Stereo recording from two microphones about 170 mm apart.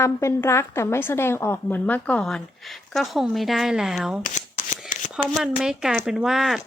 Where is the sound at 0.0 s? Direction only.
15° left (ahead or behind); by 4.2 s centre (ahead or behind).